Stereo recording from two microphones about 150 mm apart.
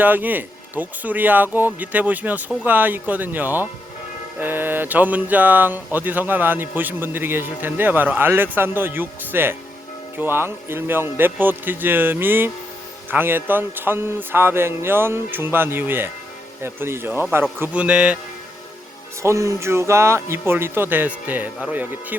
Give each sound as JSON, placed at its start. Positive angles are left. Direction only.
{"t": 0.0, "sound": "speech", "side_deg": -10}
{"t": 19.2, "sound": "speech", "side_deg": -20}